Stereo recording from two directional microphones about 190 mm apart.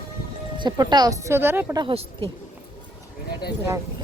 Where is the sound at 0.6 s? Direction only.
25° right (ahead or behind).